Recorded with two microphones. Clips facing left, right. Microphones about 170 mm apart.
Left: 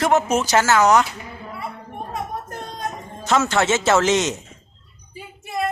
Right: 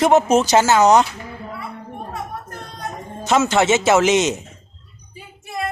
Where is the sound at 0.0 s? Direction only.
20° right (ahead or behind).